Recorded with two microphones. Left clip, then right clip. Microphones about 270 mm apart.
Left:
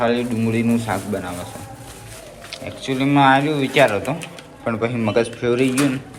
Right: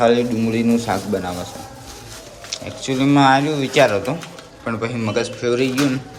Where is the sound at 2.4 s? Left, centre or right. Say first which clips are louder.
Right 1 dB; centre.